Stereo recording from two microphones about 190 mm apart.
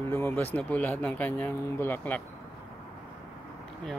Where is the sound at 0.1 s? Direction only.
10° left (ahead or behind).